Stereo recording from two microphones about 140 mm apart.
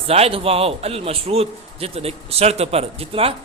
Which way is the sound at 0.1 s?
45° right (ahead or behind).